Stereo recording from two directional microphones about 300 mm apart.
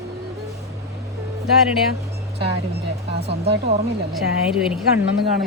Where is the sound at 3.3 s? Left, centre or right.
Right.